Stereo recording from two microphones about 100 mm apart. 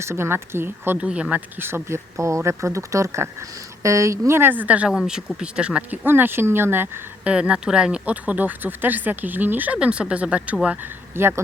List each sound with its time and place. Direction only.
0.0 s speech: 25° right (ahead or behind)
1.0 s speech: 10° right (ahead or behind)
7.3 s speech: 10° right (ahead or behind)
11.1 s speech: 25° right (ahead or behind)